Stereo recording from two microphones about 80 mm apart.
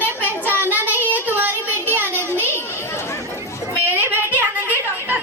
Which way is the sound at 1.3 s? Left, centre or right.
Right.